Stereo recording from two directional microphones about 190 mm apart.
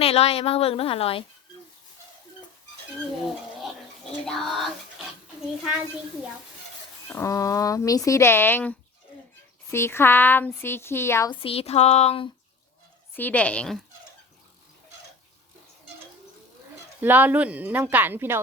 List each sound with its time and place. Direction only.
0.0 s a woman's voice: 30° left (ahead or behind)
3.6 s bathtub: centre (ahead or behind)
7.1 s speech: 15° left (ahead or behind)
11.3 s a woman's voice: 30° left (ahead or behind)
13.1 s speech: 10° left (ahead or behind)
17.0 s speech: 10° right (ahead or behind)